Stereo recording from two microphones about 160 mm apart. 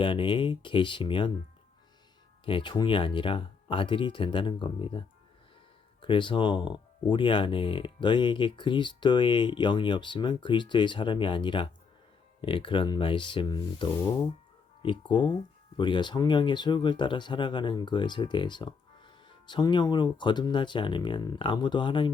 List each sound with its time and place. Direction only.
0.0 s speech: 30° left (ahead or behind)
2.4 s speech: 35° left (ahead or behind)